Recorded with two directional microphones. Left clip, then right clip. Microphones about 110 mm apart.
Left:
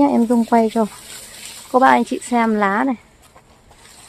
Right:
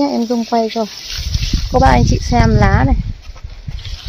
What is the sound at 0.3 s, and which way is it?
Speech, 45° left (ahead or behind).